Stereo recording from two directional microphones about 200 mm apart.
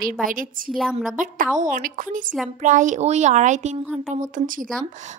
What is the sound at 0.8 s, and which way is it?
Speech, centre (ahead or behind).